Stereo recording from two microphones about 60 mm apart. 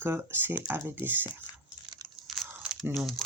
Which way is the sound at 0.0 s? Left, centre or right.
Right.